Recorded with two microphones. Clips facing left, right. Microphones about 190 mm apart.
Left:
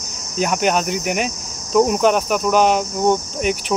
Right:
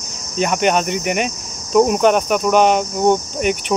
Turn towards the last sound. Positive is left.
turn(degrees=0)  # may be behind; listen again after turning